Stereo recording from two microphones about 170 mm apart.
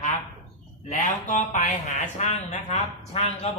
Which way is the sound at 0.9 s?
45° left (ahead or behind).